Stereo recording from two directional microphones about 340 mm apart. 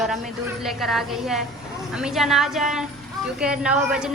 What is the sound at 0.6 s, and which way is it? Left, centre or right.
A woman's voice, centre.